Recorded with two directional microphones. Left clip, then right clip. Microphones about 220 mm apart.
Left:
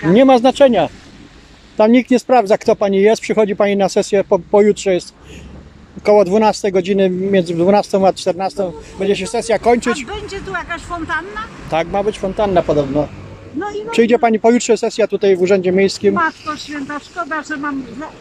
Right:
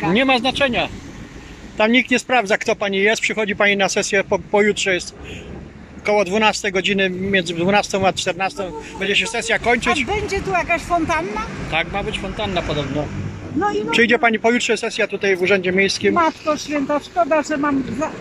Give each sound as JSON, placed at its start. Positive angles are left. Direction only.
{"t": 0.1, "sound": "speech", "side_deg": 25}
{"t": 1.8, "sound": "speech", "side_deg": 20}
{"t": 6.0, "sound": "speech", "side_deg": 20}
{"t": 10.0, "sound": "speech", "side_deg": -10}
{"t": 11.7, "sound": "speech", "side_deg": 25}
{"t": 13.8, "sound": "speech", "side_deg": 15}
{"t": 16.2, "sound": "speech", "side_deg": -10}